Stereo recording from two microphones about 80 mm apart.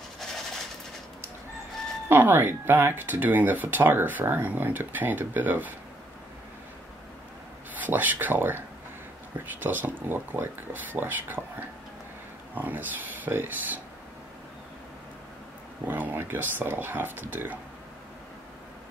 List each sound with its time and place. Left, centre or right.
2.0 s speech: right
7.7 s speech: right
12.5 s speech: right
15.9 s speech: right